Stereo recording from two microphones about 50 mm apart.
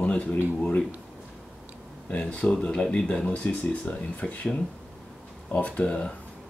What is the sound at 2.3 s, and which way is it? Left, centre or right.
Speech, left.